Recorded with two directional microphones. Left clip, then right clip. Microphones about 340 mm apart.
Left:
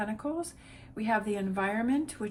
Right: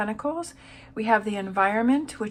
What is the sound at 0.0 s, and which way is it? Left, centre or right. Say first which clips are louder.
A woman's voice: right 6 dB; centre.